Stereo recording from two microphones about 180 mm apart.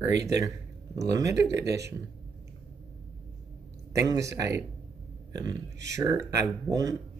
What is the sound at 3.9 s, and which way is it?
Speech, 20° right (ahead or behind).